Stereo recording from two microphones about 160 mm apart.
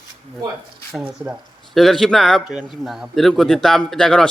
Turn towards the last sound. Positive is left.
turn(degrees=5)  # may be behind; listen again after turning